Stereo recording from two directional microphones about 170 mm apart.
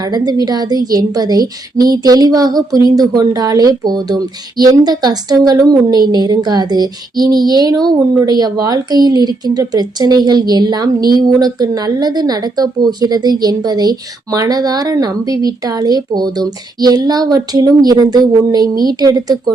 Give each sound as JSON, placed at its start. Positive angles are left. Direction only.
{"t": 0.1, "sound": "a woman's voice", "side_deg": -25}